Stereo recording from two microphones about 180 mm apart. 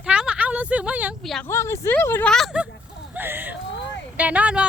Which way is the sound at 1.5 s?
15° left (ahead or behind).